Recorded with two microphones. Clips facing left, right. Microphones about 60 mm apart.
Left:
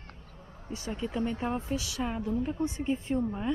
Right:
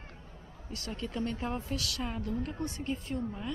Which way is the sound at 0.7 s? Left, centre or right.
Centre.